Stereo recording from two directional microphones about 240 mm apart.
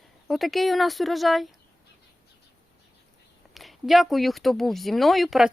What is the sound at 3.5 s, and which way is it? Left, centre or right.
Speech, centre.